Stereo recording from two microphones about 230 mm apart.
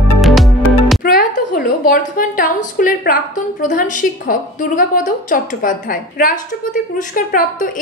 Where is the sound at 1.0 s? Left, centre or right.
Left.